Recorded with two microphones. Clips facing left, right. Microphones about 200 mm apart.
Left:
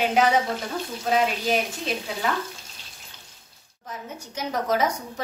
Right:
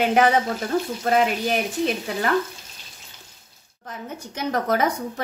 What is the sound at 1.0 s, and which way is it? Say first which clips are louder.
Speech: right 2 dB; 60° right (ahead or behind).